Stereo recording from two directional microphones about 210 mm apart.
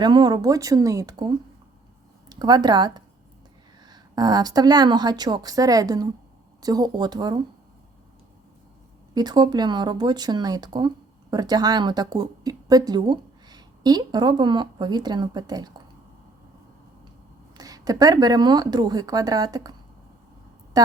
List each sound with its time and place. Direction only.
0.0 s a woman's voice: 20° right (ahead or behind)
2.3 s speech: 20° right (ahead or behind)
9.1 s speech: 20° right (ahead or behind)
17.6 s a woman's voice: 15° right (ahead or behind)
20.7 s speech: 15° right (ahead or behind)